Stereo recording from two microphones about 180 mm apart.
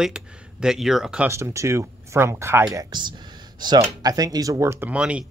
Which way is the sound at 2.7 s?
25° right (ahead or behind).